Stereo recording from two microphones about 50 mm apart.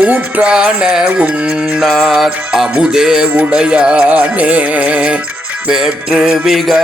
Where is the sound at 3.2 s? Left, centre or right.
Right; by 6.7 s centre.